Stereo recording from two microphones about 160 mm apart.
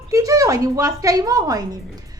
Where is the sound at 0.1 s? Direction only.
20° right (ahead or behind).